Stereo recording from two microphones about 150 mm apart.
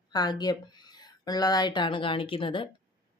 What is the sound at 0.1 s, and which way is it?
Speech, 25° left (ahead or behind).